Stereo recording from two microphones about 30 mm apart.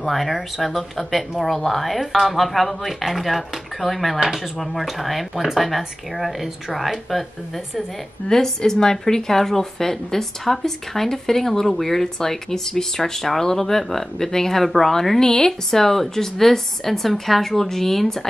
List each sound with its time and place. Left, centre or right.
0.0 s speech: centre
4.2 s speech: centre
8.3 s a woman's voice: centre